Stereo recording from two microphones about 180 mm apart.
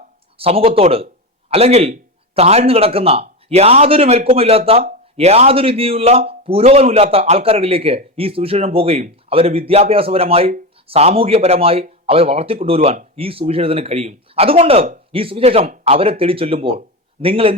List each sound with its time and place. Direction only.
0.3 s speech: 30° right (ahead or behind)